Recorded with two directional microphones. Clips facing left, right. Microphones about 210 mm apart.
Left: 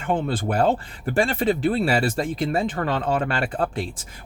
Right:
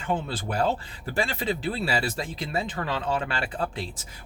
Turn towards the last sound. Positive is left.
turn(degrees=50)  # may be behind; listen again after turning